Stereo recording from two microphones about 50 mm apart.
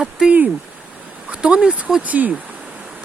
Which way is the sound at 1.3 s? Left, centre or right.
Right.